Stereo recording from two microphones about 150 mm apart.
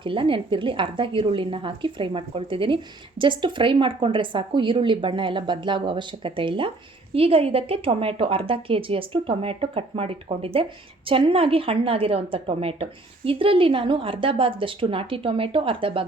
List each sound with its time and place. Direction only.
0.0 s a woman's voice: 35° right (ahead or behind)